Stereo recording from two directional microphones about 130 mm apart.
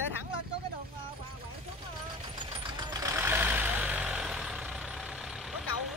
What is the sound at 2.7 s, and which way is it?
Vehicle, 35° right (ahead or behind).